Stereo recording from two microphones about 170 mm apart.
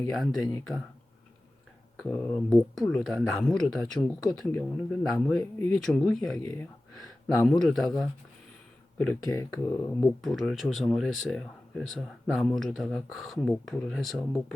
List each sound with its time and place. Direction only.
0.2 s speech: centre (ahead or behind)
2.0 s speech: 10° left (ahead or behind)
7.6 s speech: centre (ahead or behind)
10.2 s speech: centre (ahead or behind)